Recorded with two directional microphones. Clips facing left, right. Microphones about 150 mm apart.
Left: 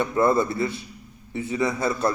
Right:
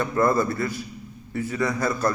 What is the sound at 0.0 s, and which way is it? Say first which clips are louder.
A man's voice: left 1 dB; 25° left (ahead or behind).